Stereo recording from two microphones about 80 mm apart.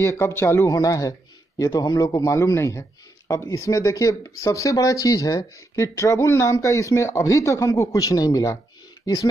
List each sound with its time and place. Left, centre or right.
0.0 s speech: left
1.7 s speech: left
2.3 s speech: left